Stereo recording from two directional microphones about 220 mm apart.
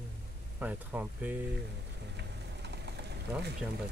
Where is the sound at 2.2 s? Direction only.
50° right (ahead or behind).